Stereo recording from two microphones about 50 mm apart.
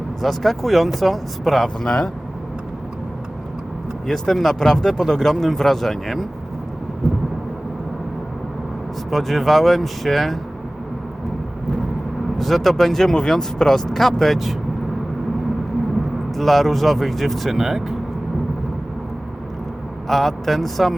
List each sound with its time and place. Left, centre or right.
0.2 s speech: centre
1.8 s speech: centre
4.0 s speech: centre
9.0 s speech: centre
12.4 s speech: centre
16.4 s speech: centre
20.1 s speech: centre